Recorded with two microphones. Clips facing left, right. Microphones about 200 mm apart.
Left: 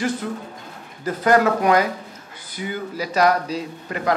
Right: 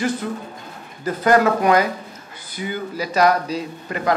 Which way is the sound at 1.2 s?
10° right (ahead or behind).